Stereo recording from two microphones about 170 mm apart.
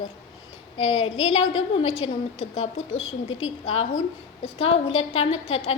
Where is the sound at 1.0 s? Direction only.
35° left (ahead or behind).